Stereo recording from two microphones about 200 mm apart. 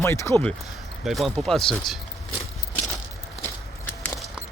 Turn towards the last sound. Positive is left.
turn(degrees=10)  # may be behind; listen again after turning